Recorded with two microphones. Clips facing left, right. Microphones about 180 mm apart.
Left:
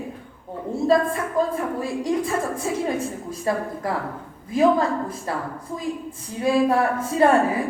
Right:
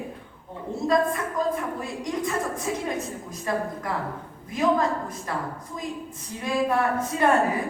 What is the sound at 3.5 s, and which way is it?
Singing, 30° left (ahead or behind).